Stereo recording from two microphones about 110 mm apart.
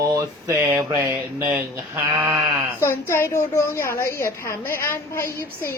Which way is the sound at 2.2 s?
15° right (ahead or behind).